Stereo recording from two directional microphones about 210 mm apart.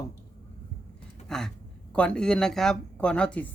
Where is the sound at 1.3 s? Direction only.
Centre (ahead or behind).